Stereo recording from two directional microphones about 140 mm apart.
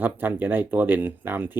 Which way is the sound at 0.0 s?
15° right (ahead or behind).